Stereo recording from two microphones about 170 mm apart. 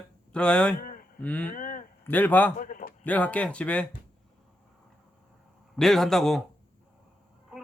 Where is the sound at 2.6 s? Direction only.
55° left (ahead or behind).